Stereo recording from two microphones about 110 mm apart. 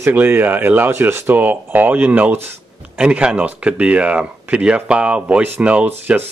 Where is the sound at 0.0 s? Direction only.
20° right (ahead or behind).